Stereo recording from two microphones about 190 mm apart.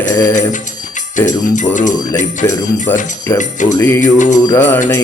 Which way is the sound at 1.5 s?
40° left (ahead or behind).